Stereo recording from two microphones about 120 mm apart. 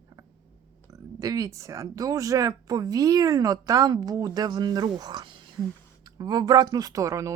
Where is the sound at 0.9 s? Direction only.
25° right (ahead or behind).